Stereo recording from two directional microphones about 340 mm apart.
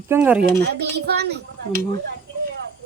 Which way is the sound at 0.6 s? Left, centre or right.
Right.